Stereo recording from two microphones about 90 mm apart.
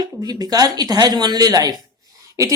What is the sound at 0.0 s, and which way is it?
A woman's voice, 45° right (ahead or behind).